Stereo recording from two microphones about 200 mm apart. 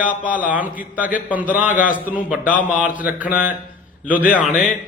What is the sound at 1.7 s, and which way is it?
Speech, 40° left (ahead or behind).